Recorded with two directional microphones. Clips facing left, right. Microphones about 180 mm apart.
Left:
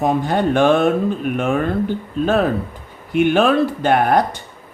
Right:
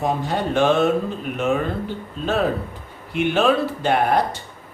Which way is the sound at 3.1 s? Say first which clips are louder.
Left 4 dB; 55° left (ahead or behind).